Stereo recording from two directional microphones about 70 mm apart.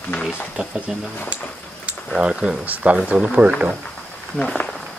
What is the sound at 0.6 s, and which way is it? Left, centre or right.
Speech, centre.